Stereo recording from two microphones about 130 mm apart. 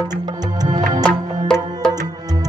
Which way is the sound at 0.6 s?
30° right (ahead or behind).